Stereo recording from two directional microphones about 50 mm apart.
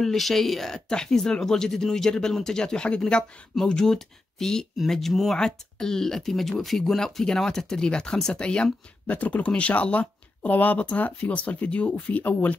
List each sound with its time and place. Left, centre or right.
0.0 s speech: centre
9.0 s speech: left